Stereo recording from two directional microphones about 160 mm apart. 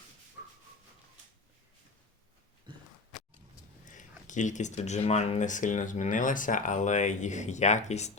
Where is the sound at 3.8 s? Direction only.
50° left (ahead or behind).